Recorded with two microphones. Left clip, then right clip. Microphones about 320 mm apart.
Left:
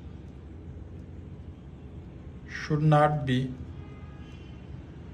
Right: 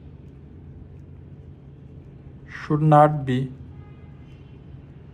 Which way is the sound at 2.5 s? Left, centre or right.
Centre.